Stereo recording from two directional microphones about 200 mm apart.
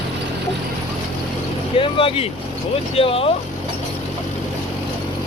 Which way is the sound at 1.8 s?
25° left (ahead or behind).